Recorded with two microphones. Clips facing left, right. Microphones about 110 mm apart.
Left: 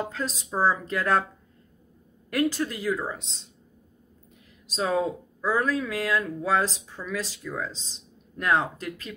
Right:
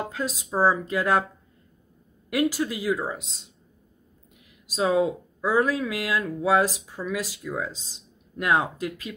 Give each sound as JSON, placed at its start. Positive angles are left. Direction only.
{"t": 0.1, "sound": "speech", "side_deg": -10}
{"t": 2.2, "sound": "speech", "side_deg": -10}
{"t": 4.6, "sound": "speech", "side_deg": -10}